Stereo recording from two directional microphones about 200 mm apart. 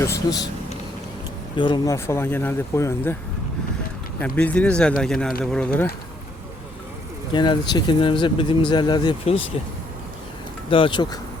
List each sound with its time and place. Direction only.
0.0 s speech: 15° left (ahead or behind)
1.5 s speech: 25° left (ahead or behind)
4.4 s speech: 5° left (ahead or behind)
7.3 s speech: 20° left (ahead or behind)
10.7 s speech: 25° left (ahead or behind)